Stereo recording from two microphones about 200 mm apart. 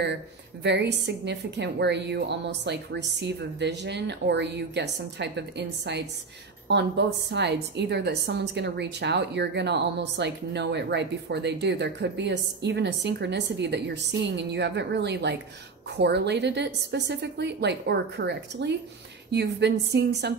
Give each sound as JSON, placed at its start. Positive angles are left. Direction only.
{"t": 0.7, "sound": "a woman's voice", "side_deg": -60}